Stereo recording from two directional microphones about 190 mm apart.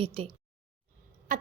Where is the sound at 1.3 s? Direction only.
45° right (ahead or behind).